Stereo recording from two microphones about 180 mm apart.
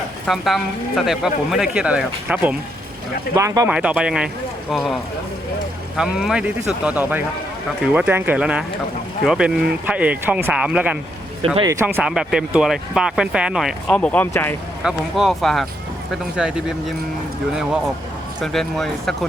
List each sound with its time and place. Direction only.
0.3 s speech: centre (ahead or behind)
3.3 s speech: 20° right (ahead or behind)
3.7 s speech: 5° right (ahead or behind)
6.0 s speech: 5° right (ahead or behind)
11.4 s speech: 30° right (ahead or behind)
11.7 s speech: 15° right (ahead or behind); by 14.5 s 10° left (ahead or behind)
14.8 s speech: centre (ahead or behind)